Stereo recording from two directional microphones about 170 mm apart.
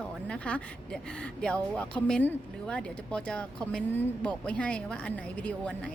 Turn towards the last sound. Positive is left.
turn(degrees=5)  # may be behind; listen again after turning